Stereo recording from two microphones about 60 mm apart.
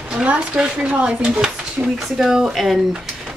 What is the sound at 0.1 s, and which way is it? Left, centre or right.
Speech, right.